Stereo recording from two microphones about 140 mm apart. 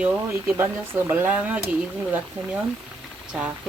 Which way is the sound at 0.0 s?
15° right (ahead or behind).